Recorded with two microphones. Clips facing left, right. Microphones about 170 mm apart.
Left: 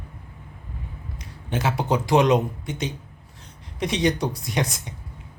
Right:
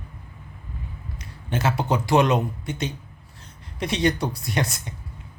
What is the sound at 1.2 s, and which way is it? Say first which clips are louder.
A man's voice: right 1 dB; 15° left (ahead or behind).